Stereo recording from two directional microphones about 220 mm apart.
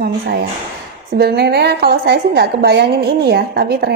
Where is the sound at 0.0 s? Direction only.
50° right (ahead or behind).